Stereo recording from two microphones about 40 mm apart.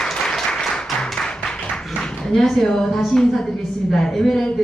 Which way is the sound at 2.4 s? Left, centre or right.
Centre.